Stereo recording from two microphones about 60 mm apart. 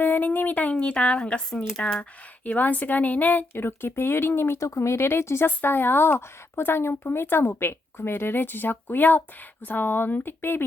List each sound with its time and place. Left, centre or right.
0.0 s a woman's voice: left; by 2.0 s centre
2.0 s speech: left